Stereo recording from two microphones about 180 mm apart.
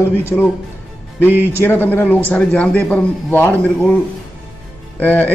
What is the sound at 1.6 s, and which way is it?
A man's voice, 10° left (ahead or behind).